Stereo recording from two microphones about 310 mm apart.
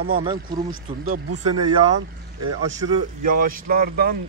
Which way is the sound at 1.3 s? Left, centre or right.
Right.